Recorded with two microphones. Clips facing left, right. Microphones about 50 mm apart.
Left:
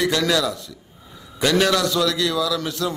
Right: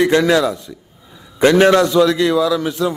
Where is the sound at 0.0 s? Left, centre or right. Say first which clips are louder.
Right 7 dB; right.